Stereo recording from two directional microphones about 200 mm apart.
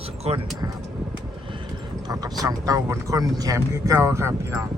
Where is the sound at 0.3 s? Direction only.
30° right (ahead or behind).